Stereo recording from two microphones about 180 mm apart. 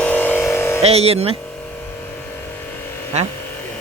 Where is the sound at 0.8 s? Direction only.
35° right (ahead or behind).